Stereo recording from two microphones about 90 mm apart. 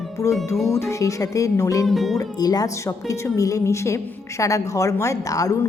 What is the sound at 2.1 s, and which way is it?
A woman's voice, 45° left (ahead or behind).